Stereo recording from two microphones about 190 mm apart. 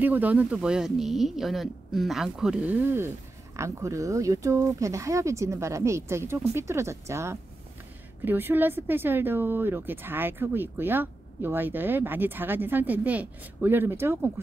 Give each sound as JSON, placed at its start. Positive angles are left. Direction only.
{"t": 0.0, "sound": "a woman's voice", "side_deg": -10}